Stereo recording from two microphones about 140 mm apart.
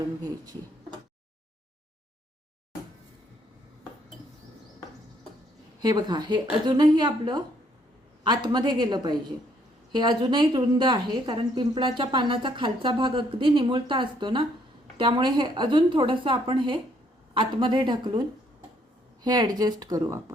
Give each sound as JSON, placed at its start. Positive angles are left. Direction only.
{"t": 5.8, "sound": "speech", "side_deg": -30}
{"t": 19.2, "sound": "speech", "side_deg": -30}